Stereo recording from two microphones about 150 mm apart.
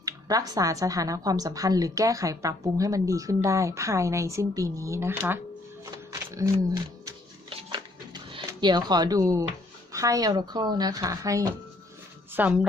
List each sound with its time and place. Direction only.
0.0 s a woman's voice: 25° right (ahead or behind)
5.8 s music: 20° right (ahead or behind)
7.7 s a sound: 30° right (ahead or behind)
9.9 s a woman's voice: 20° right (ahead or behind)
12.3 s speech: 10° right (ahead or behind)